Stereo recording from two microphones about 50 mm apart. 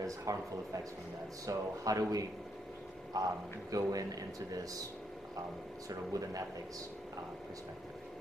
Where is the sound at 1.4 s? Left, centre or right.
Right.